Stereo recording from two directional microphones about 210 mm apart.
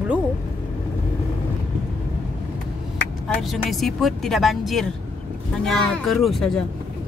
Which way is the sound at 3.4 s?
Centre (ahead or behind).